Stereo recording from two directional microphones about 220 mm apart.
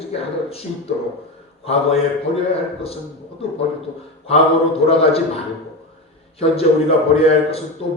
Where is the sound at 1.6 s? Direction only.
25° left (ahead or behind).